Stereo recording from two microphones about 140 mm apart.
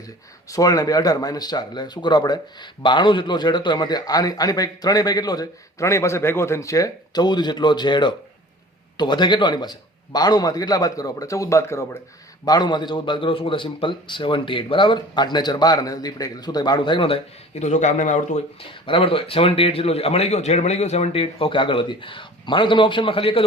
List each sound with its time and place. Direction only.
0.4 s speech: 25° left (ahead or behind)
12.5 s a man's voice: 30° left (ahead or behind); by 18.4 s 60° left (ahead or behind)
18.7 s a man's voice: 40° left (ahead or behind)